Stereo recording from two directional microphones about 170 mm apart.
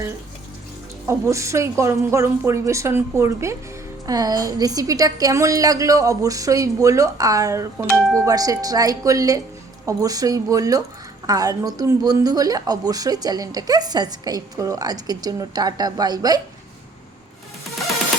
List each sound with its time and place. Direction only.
1.0 s a woman's voice: 15° right (ahead or behind)
7.9 s speech: centre (ahead or behind)
8.2 s a woman's voice: 20° right (ahead or behind)